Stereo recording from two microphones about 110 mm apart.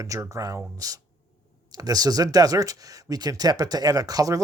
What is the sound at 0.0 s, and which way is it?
Speech, 30° right (ahead or behind).